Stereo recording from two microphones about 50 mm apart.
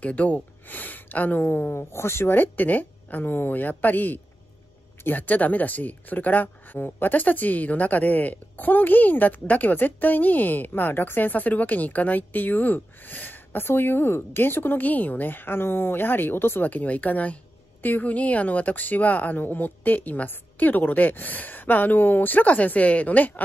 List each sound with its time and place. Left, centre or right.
0.0 s speech: left
1.8 s speech: left
2.3 s speech: left
16.6 s speech: left